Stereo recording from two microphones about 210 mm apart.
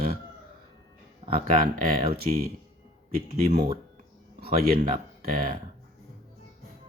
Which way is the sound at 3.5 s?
30° right (ahead or behind).